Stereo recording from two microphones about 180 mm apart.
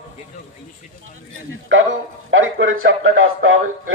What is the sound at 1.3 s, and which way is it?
A man's voice, 90° right.